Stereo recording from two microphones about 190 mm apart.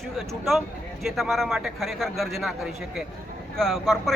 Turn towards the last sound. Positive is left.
turn(degrees=0)  # may be behind; listen again after turning